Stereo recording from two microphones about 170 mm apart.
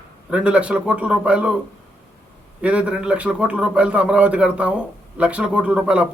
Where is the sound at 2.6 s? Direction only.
5° right (ahead or behind).